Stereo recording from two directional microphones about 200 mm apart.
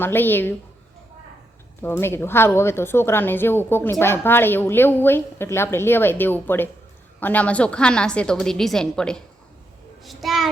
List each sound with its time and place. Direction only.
0.0 s a woman's voice: 10° left (ahead or behind)
1.8 s a woman's voice: 10° left (ahead or behind)